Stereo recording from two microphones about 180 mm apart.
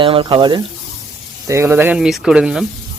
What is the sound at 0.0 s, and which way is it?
Speech, 30° right (ahead or behind).